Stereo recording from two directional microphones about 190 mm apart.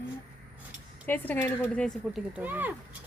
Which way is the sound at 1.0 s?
10° left (ahead or behind).